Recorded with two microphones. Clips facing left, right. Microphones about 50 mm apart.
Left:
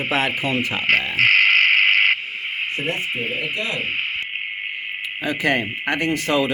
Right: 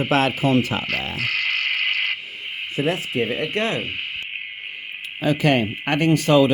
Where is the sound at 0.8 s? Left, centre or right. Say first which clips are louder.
Left 8 dB; left.